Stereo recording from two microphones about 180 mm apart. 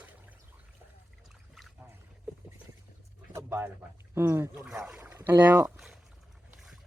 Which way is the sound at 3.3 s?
15° right (ahead or behind).